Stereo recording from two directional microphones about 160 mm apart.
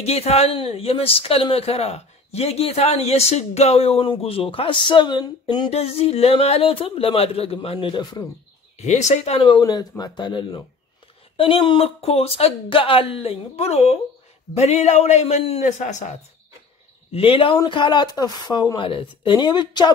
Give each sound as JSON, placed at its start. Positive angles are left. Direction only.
{"t": 0.0, "sound": "speech", "side_deg": 40}
{"t": 8.7, "sound": "a man's voice", "side_deg": 45}
{"t": 17.1, "sound": "speech", "side_deg": 35}